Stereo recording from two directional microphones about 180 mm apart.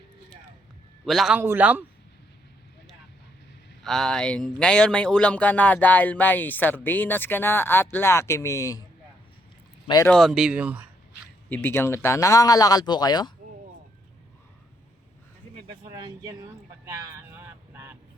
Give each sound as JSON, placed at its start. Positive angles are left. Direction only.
{"t": 1.0, "sound": "speech", "side_deg": 0}
{"t": 3.8, "sound": "speech", "side_deg": 5}
{"t": 9.8, "sound": "speech", "side_deg": 20}
{"t": 10.1, "sound": "speech", "side_deg": 0}
{"t": 11.4, "sound": "speech", "side_deg": 10}
{"t": 15.6, "sound": "vehicle", "side_deg": -25}
{"t": 16.8, "sound": "a sound", "side_deg": -15}